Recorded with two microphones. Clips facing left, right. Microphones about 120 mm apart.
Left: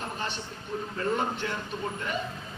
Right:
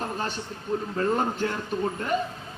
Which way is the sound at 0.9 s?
40° right (ahead or behind).